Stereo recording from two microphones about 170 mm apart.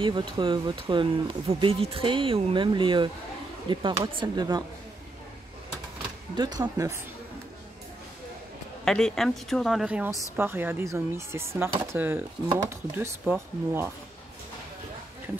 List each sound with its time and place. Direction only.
0.0 s speech: 30° right (ahead or behind)
6.3 s speech: 25° right (ahead or behind)
8.8 s a woman's voice: 5° left (ahead or behind); by 13.9 s 15° right (ahead or behind)